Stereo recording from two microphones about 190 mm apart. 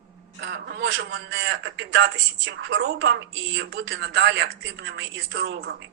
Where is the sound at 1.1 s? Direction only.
65° right (ahead or behind).